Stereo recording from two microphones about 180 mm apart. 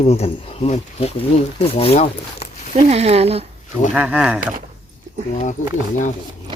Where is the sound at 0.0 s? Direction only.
35° left (ahead or behind).